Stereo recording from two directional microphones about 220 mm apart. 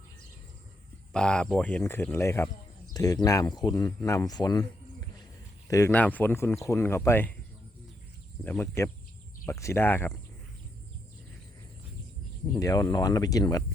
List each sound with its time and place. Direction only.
1.1 s speech: 5° left (ahead or behind)
5.6 s speech: 15° left (ahead or behind)
8.4 s speech: 10° left (ahead or behind)
12.5 s speech: 15° left (ahead or behind)